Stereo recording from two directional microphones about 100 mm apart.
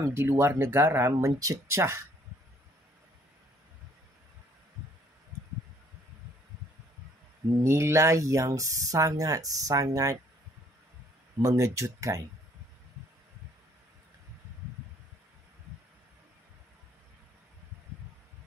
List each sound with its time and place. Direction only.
0.0 s speech: 25° right (ahead or behind)
7.6 s speech: 25° right (ahead or behind)
11.4 s speech: 30° right (ahead or behind)